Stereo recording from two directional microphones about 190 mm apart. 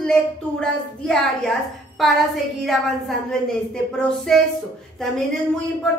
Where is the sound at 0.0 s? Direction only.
5° left (ahead or behind).